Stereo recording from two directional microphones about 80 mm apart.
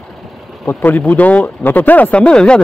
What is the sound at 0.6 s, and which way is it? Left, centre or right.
Speech, left.